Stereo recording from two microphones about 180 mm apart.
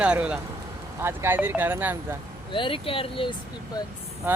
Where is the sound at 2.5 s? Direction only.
30° left (ahead or behind).